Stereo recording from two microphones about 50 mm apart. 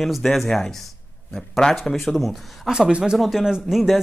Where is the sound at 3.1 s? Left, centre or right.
Centre.